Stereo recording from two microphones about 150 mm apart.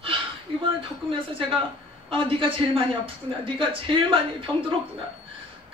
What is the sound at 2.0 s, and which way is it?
Speech, 35° right (ahead or behind).